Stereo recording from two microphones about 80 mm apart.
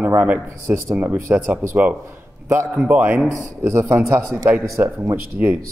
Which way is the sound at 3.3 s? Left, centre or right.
Right.